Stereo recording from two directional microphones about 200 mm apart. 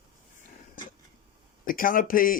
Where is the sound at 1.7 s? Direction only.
45° left (ahead or behind).